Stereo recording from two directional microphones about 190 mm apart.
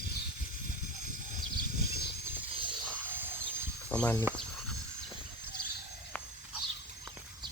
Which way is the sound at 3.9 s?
5° left (ahead or behind).